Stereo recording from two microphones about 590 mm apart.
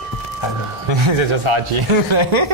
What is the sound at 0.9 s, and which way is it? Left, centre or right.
Speech, right.